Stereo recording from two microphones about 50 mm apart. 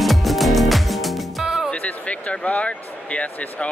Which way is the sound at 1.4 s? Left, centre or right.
Centre.